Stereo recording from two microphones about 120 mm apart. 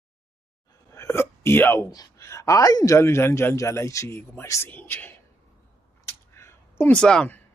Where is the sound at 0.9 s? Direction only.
20° left (ahead or behind).